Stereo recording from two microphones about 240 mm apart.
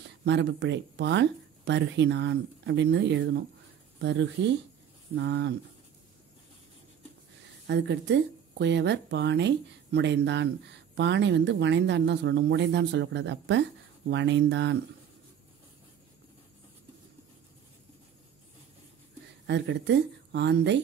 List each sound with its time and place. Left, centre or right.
0.2 s speech: right
7.6 s speech: right
19.4 s speech: right